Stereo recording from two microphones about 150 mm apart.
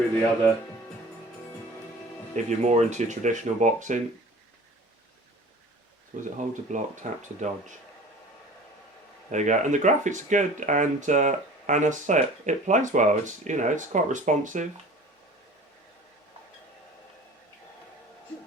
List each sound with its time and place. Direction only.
2.3 s speech: 50° right (ahead or behind)
6.3 s speech: 55° right (ahead or behind)
9.3 s speech: 55° right (ahead or behind)